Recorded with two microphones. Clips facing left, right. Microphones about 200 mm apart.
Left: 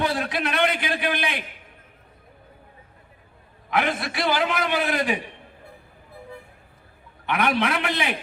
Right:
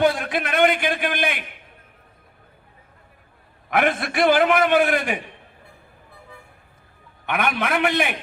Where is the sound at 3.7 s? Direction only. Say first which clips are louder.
Right 3 dB; 55° right (ahead or behind).